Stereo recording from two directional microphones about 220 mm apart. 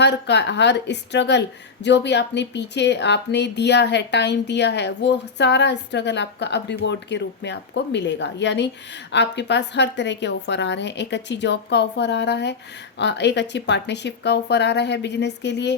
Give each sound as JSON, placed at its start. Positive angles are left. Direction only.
{"t": 0.0, "sound": "a woman's voice", "side_deg": 50}